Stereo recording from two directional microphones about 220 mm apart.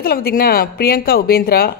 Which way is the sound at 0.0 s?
45° left (ahead or behind).